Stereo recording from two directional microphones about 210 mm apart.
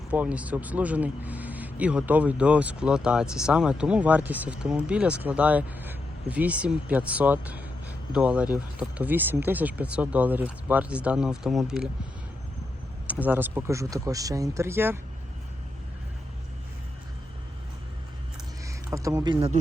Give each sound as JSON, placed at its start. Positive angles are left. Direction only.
{"t": 0.1, "sound": "speech", "side_deg": -5}
{"t": 13.1, "sound": "speech", "side_deg": -10}
{"t": 18.6, "sound": "speech", "side_deg": -15}